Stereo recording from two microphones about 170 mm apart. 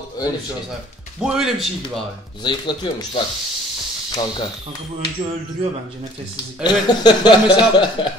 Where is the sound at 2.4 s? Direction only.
25° left (ahead or behind).